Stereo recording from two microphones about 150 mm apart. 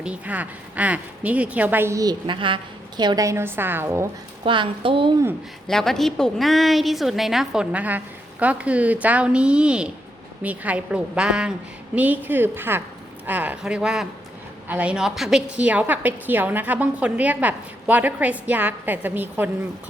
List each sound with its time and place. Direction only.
0.0 s a woman's voice: 10° right (ahead or behind)
4.4 s a woman's voice: 35° right (ahead or behind)
5.6 s a woman's voice: 5° left (ahead or behind); by 19.5 s 15° right (ahead or behind)